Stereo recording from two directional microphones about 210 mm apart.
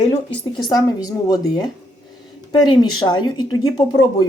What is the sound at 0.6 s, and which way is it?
A woman's voice, 20° left (ahead or behind).